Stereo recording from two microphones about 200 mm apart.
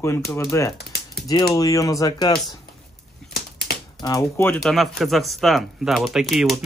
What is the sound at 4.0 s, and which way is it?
Speech, 15° left (ahead or behind).